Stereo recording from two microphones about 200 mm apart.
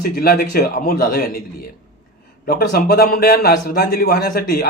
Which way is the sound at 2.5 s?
50° left (ahead or behind).